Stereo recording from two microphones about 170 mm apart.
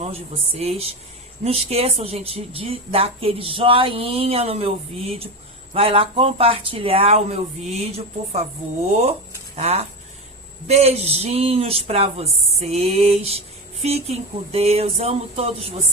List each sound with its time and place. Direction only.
0.0 s speech: 35° right (ahead or behind)